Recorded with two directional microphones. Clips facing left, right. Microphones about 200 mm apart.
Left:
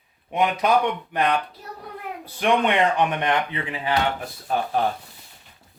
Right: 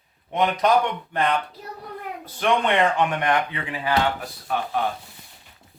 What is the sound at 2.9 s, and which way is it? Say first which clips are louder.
Speech: even; 20° left (ahead or behind).